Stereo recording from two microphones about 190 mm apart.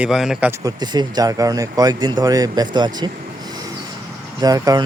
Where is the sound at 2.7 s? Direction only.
20° right (ahead or behind).